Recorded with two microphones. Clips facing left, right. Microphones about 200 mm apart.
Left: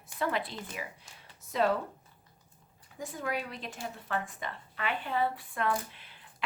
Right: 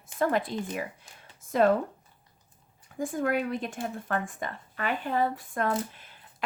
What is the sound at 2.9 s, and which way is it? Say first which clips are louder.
Speech: right 8 dB; 50° right (ahead or behind).